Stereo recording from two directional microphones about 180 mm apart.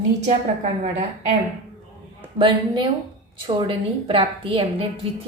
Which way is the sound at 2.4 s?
25° right (ahead or behind).